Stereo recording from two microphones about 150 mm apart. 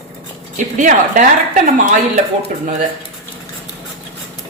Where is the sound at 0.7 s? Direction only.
60° right (ahead or behind).